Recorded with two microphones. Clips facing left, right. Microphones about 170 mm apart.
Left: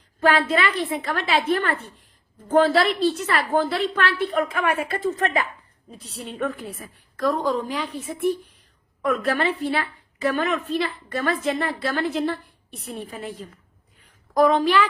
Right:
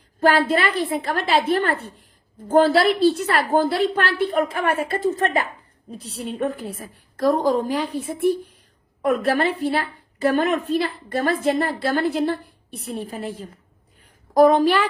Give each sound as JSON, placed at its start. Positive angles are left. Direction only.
{"t": 0.2, "sound": "a woman's voice", "side_deg": -40}
{"t": 0.4, "sound": "a woman's voice", "side_deg": -55}
{"t": 9.0, "sound": "a woman's voice", "side_deg": -30}
{"t": 11.8, "sound": "a woman's voice", "side_deg": -50}
{"t": 13.1, "sound": "a woman's voice", "side_deg": -40}
{"t": 14.3, "sound": "a woman's voice", "side_deg": -40}